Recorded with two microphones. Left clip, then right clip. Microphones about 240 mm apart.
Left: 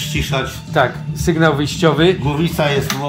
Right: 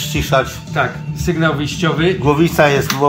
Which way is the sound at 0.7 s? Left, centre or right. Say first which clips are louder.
Left 7 dB; left.